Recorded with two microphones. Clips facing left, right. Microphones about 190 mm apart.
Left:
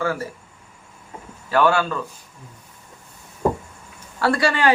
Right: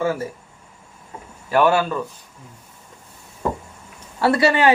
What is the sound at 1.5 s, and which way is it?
Speech, 15° right (ahead or behind).